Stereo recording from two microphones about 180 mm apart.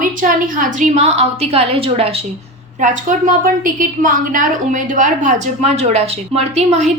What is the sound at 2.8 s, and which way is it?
A woman's voice, 45° right (ahead or behind).